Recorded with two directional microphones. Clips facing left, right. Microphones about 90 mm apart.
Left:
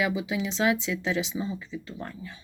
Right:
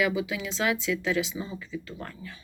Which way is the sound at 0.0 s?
25° left (ahead or behind).